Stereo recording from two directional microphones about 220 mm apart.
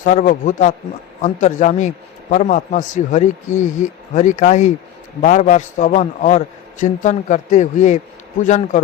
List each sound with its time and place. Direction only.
0.0 s a man's voice: 35° left (ahead or behind)